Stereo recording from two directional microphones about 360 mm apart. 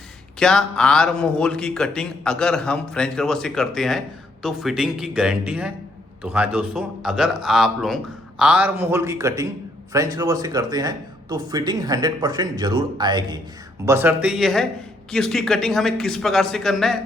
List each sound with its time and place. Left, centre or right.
0.3 s a man's voice: centre